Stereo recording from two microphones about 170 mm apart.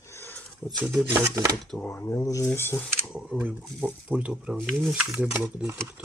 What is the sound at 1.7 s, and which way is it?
Speech, 10° left (ahead or behind).